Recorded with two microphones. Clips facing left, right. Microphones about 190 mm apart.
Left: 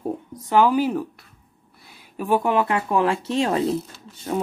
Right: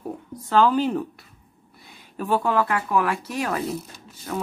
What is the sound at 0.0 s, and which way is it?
Speech, 20° left (ahead or behind).